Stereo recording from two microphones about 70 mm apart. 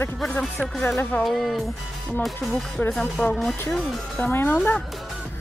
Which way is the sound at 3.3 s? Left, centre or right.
Centre.